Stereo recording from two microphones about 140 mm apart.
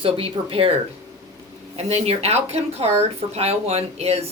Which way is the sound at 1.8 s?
45° right (ahead or behind).